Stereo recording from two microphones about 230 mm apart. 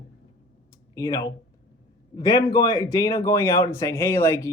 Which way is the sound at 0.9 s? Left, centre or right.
Centre.